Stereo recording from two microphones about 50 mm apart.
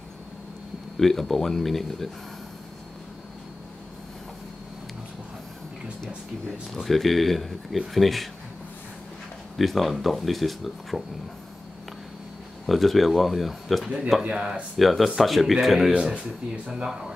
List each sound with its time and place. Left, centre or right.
0.9 s speech: centre
6.7 s speech: centre
9.6 s speech: centre
12.6 s speech: centre
14.2 s speech: centre
14.8 s speech: centre
16.0 s speech: centre